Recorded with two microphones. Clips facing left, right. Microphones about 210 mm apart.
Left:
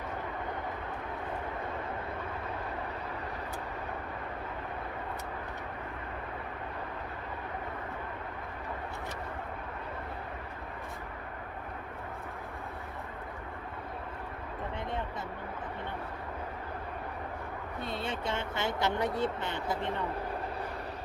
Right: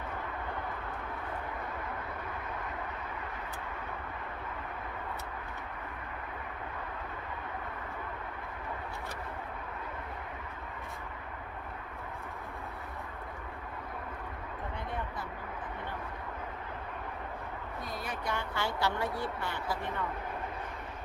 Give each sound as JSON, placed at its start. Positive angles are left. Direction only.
{"t": 17.8, "sound": "speech", "side_deg": 25}